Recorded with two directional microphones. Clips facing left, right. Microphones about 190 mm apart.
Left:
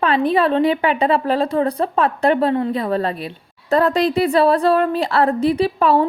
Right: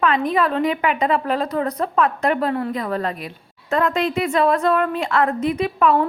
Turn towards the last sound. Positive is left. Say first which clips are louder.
# left 2 dB
turn(degrees=30)  # may be behind; listen again after turning